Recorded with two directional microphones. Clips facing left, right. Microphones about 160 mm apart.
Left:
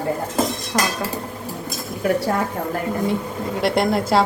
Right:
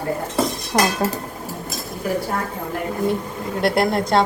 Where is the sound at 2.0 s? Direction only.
75° left (ahead or behind).